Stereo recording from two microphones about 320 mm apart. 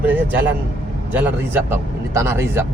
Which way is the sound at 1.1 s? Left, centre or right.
Centre.